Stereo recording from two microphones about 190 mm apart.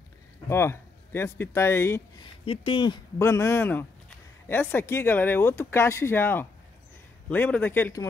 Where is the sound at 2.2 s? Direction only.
30° left (ahead or behind).